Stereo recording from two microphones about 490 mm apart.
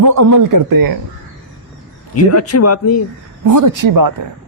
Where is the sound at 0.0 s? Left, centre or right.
Right.